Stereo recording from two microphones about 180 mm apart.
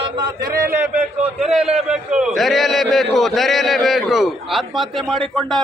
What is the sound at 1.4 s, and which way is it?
A man's voice, 5° right (ahead or behind).